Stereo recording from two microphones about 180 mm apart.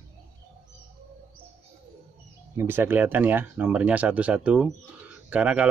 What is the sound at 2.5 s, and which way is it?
Speech, 10° right (ahead or behind).